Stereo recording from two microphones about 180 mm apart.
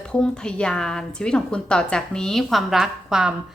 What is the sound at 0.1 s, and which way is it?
A woman's voice, 5° left (ahead or behind).